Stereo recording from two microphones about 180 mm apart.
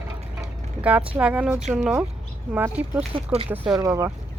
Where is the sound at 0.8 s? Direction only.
10° right (ahead or behind).